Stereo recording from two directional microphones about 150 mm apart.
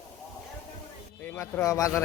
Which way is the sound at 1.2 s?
15° left (ahead or behind).